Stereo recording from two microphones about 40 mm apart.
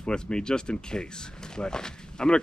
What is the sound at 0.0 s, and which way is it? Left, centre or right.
Speech, left.